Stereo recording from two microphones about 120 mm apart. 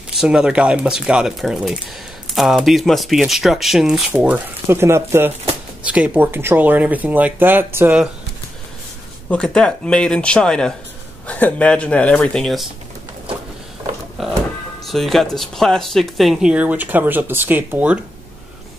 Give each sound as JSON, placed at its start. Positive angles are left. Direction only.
{"t": 0.1, "sound": "speech", "side_deg": -5}
{"t": 4.6, "sound": "speech", "side_deg": -20}
{"t": 5.9, "sound": "speech", "side_deg": -10}
{"t": 9.3, "sound": "speech", "side_deg": 5}
{"t": 14.2, "sound": "speech", "side_deg": 0}